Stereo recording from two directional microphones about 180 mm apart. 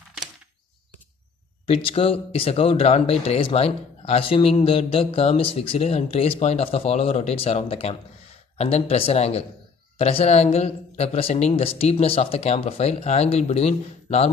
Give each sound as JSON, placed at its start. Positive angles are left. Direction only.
{"t": 1.7, "sound": "speech", "side_deg": 30}